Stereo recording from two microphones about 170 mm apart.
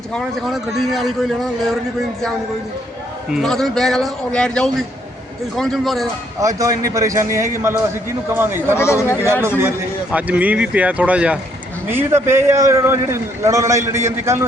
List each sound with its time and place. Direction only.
0.1 s speech: centre (ahead or behind)
3.3 s speech: centre (ahead or behind)
6.4 s a man's voice: 20° right (ahead or behind)
8.8 s speech: 15° left (ahead or behind)
9.2 s a man's voice: 15° right (ahead or behind)